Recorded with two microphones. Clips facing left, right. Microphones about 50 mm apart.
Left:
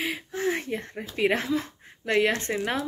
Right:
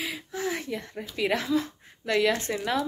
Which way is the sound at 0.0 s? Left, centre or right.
Left.